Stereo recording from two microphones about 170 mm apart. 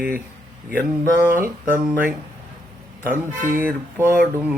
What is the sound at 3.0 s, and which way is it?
Speech, 15° right (ahead or behind).